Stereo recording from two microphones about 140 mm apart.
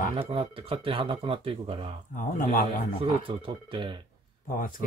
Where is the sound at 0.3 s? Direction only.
40° right (ahead or behind).